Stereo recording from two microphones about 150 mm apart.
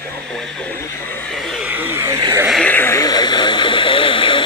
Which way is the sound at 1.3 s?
Centre (ahead or behind).